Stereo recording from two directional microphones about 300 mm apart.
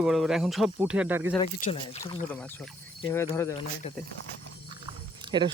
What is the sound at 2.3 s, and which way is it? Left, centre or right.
Speech, centre.